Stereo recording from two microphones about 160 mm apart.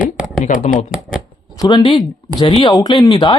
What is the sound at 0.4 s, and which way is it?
Speech, 55° left (ahead or behind).